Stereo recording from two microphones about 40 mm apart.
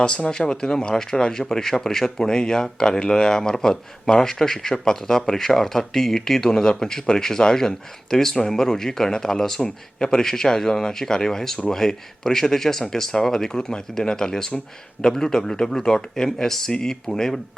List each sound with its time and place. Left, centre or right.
0.3 s speech: centre